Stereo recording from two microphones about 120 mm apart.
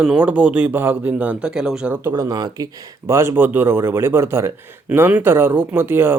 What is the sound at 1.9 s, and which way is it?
Speech, 20° right (ahead or behind).